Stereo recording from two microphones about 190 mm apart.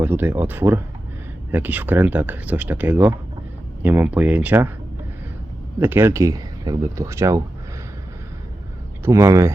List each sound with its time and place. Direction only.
0.0 s speech: 10° right (ahead or behind)
5.8 s speech: 10° right (ahead or behind)
9.0 s speech: 15° right (ahead or behind)